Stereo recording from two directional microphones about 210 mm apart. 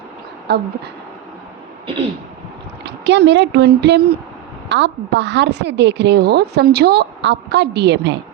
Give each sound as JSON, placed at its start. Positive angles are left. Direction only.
{"t": 0.5, "sound": "a woman's voice", "side_deg": -50}
{"t": 2.8, "sound": "a woman's voice", "side_deg": -55}